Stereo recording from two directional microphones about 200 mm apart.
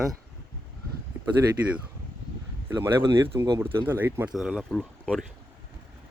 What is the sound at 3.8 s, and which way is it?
Speech, 10° right (ahead or behind).